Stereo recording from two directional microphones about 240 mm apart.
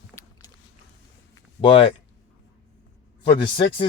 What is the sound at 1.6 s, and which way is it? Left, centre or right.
Speech, left.